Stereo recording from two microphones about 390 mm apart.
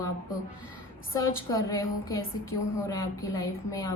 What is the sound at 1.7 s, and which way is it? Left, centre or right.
A woman's voice, centre.